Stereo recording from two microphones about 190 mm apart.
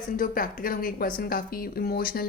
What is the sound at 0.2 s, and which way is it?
A woman's voice, 45° left (ahead or behind).